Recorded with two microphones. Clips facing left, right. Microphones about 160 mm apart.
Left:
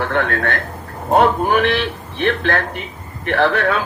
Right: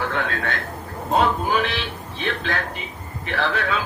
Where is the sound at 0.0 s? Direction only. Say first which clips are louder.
Left 6 dB; 55° left (ahead or behind).